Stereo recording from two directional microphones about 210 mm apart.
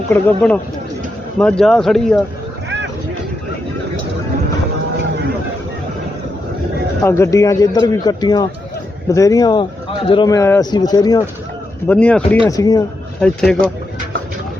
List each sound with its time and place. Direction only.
0.1 s a man's voice: 10° left (ahead or behind)
7.0 s a man's voice: 15° left (ahead or behind)
11.9 s speech: 5° left (ahead or behind)
12.5 s a man's voice: 15° left (ahead or behind)
13.1 s speech: 5° left (ahead or behind)